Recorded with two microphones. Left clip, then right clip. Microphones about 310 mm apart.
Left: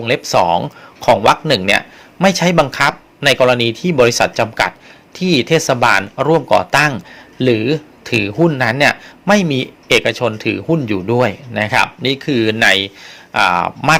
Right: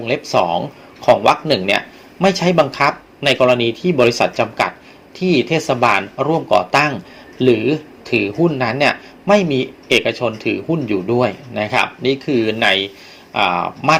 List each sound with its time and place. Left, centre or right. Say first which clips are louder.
0.0 s speech: left 3 dB; left